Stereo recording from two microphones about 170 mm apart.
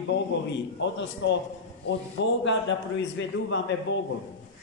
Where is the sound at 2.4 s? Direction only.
90° left.